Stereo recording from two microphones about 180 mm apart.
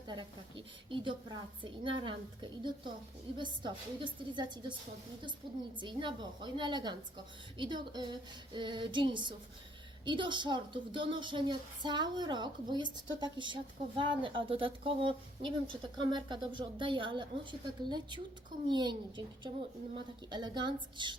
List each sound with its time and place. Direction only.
0.1 s a woman's voice: 25° right (ahead or behind)
5.7 s a woman's voice: 25° right (ahead or behind)